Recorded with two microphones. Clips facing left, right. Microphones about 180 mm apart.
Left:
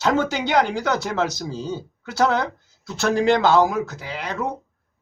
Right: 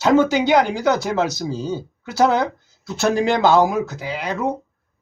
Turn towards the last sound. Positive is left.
turn(degrees=-10)  # may be behind; listen again after turning